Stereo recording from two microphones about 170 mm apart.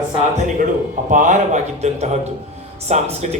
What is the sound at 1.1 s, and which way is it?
A man's voice, 45° right (ahead or behind).